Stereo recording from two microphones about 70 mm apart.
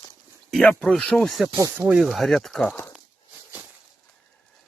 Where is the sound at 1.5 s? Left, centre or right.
Right.